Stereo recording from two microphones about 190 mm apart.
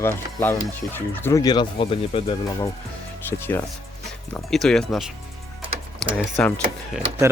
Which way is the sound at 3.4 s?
10° left (ahead or behind).